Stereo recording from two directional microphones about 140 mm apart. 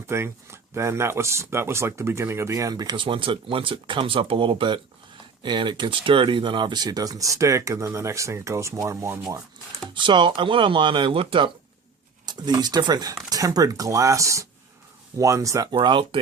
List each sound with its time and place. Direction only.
0.1 s speech: 20° right (ahead or behind)
9.9 s speech: 35° right (ahead or behind)
15.7 s speech: 35° right (ahead or behind)